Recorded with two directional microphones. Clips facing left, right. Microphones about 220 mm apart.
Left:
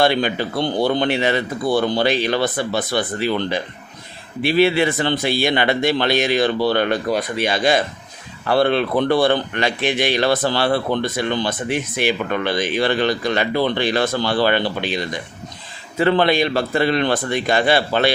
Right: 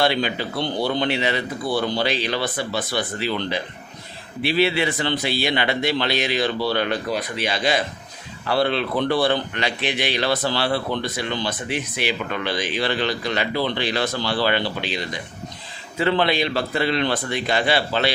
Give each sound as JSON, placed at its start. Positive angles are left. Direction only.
{"t": 0.0, "sound": "speech", "side_deg": 50}